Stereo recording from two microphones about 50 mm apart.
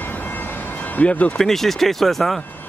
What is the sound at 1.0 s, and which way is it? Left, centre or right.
Speech, left.